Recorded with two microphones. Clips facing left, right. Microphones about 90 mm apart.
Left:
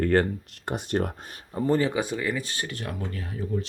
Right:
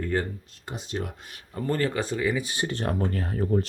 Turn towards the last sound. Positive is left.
turn(degrees=-45)  # may be behind; listen again after turning